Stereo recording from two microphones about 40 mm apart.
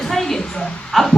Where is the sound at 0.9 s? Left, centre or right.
Centre.